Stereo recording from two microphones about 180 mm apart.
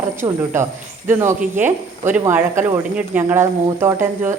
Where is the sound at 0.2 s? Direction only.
25° right (ahead or behind).